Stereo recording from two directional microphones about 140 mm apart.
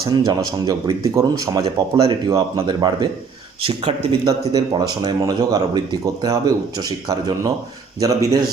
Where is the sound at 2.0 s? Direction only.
40° right (ahead or behind).